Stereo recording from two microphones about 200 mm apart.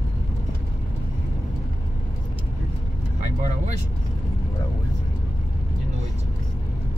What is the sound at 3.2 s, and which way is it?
Vehicle, 40° right (ahead or behind).